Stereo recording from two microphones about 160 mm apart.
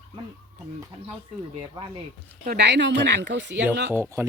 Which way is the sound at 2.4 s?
90° right.